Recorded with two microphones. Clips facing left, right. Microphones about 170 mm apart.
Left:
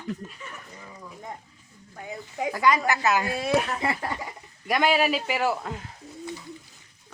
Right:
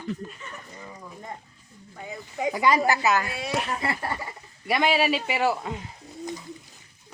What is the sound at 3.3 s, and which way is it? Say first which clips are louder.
Speech: left 5 dB; 40° left (ahead or behind).